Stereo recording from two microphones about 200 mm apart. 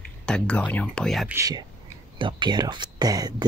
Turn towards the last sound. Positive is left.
turn(degrees=-20)  # may be behind; listen again after turning